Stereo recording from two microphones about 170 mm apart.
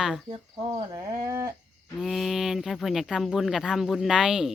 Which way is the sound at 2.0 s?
Centre (ahead or behind).